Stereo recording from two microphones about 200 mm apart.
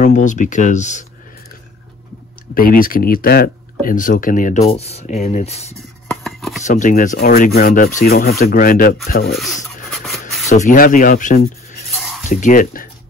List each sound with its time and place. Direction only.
0.0 s speech: 40° left (ahead or behind)
2.5 s speech: 45° left (ahead or behind)
6.0 s a sound: centre (ahead or behind)
6.6 s speech: 40° left (ahead or behind)
9.3 s speech: centre (ahead or behind)
9.8 s writing: centre (ahead or behind)
10.5 s speech: 40° left (ahead or behind)